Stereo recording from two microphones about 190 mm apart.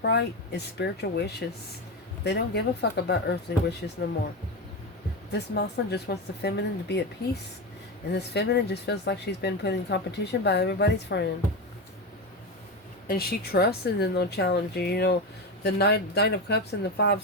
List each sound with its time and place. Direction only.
0.0 s speech: 60° left (ahead or behind)
5.3 s speech: 60° left (ahead or behind)
8.1 s speech: 60° left (ahead or behind)
13.1 s speech: 55° left (ahead or behind)